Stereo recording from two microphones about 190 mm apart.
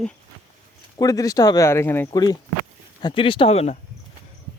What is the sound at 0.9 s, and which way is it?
Speech, 20° left (ahead or behind).